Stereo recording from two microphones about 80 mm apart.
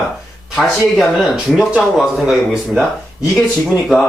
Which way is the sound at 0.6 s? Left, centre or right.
Centre.